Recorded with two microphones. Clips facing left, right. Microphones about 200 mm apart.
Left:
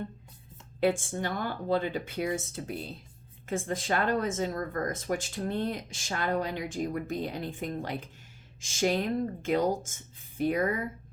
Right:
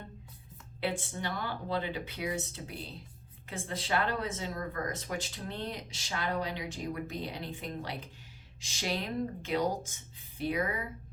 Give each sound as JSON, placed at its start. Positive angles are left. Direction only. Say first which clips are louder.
{"t": 0.8, "sound": "speech", "louder": "left 7 dB", "side_deg": 45}